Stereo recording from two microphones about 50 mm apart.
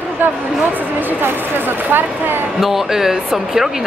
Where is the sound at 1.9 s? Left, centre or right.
Right.